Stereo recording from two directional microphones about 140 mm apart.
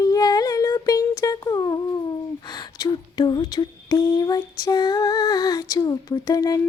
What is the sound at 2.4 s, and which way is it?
Humming, 30° left (ahead or behind).